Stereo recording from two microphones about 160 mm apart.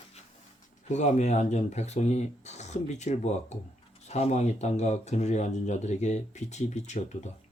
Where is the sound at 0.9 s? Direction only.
45° left (ahead or behind).